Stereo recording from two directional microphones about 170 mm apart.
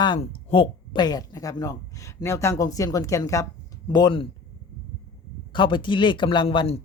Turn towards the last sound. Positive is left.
turn(degrees=30)  # may be behind; listen again after turning